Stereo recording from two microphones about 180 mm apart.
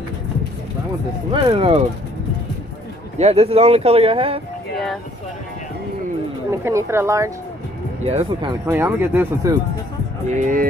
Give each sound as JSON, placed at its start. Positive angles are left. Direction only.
{"t": 1.3, "sound": "speech", "side_deg": -30}
{"t": 3.2, "sound": "speech", "side_deg": -35}
{"t": 6.5, "sound": "speech", "side_deg": -15}
{"t": 8.0, "sound": "speech", "side_deg": -35}
{"t": 8.6, "sound": "speech", "side_deg": -15}
{"t": 10.2, "sound": "speech", "side_deg": -45}